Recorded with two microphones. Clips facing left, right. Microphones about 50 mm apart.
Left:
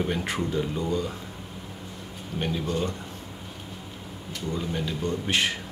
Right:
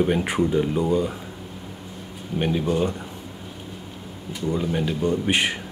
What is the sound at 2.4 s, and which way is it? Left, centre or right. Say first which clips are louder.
Speech: right 6 dB; centre.